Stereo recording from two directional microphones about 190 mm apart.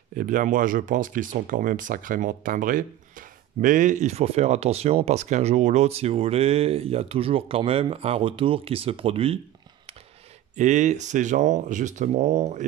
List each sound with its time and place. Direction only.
0.1 s speech: 45° right (ahead or behind)
10.5 s speech: 40° right (ahead or behind)